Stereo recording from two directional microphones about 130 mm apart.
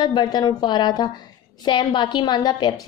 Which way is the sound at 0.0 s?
35° left (ahead or behind).